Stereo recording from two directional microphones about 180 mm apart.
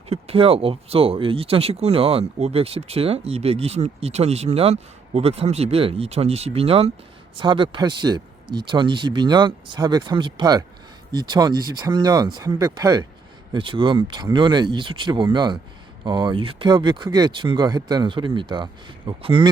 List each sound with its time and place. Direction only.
0.1 s speech: 35° right (ahead or behind)